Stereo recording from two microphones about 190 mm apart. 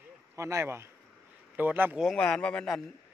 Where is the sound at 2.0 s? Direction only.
5° left (ahead or behind).